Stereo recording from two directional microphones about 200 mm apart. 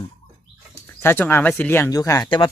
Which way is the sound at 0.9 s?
10° left (ahead or behind).